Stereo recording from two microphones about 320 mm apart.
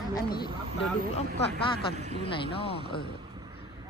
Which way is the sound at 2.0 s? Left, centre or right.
Right.